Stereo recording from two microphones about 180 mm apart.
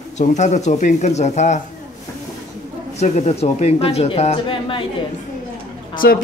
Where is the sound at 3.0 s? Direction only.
40° left (ahead or behind).